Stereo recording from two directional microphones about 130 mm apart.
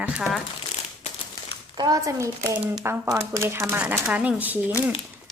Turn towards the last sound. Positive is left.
turn(degrees=-15)  # may be behind; listen again after turning